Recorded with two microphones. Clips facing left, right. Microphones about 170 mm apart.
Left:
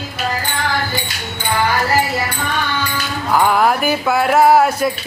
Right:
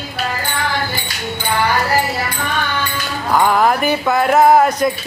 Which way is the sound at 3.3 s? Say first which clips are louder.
Even; 5° left (ahead or behind).